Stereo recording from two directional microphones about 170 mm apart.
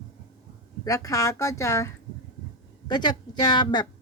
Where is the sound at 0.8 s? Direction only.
20° left (ahead or behind).